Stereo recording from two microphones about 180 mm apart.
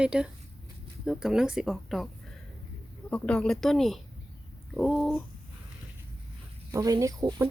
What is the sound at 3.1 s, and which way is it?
Speech, 5° left (ahead or behind).